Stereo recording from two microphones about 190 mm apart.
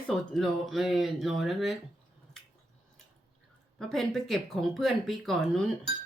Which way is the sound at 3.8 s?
Centre (ahead or behind).